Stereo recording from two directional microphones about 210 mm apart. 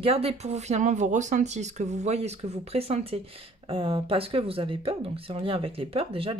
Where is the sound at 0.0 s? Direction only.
30° right (ahead or behind).